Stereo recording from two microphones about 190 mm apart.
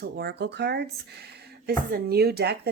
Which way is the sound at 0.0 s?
60° right (ahead or behind).